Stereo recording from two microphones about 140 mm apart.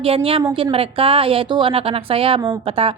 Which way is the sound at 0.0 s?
40° right (ahead or behind).